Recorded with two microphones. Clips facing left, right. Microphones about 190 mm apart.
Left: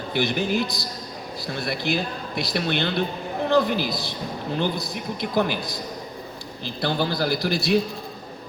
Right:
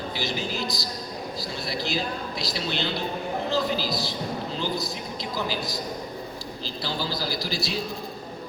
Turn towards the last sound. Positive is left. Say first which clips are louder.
# left 8 dB
turn(degrees=60)  # may be behind; listen again after turning